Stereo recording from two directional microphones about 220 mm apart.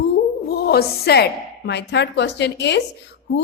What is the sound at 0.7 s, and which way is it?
A woman's voice, 45° left (ahead or behind).